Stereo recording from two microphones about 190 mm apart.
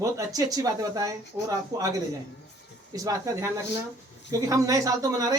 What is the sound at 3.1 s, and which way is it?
Speech, 20° right (ahead or behind).